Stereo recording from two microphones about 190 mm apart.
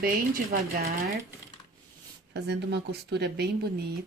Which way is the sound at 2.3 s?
65° right (ahead or behind).